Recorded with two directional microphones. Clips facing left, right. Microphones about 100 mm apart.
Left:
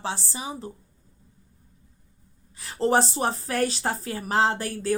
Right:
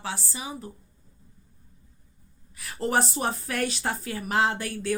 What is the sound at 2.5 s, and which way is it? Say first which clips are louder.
A woman's voice: left 4 dB; 30° left (ahead or behind).